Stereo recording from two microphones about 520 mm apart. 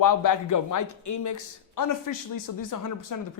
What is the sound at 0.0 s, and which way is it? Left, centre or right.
Speech, left.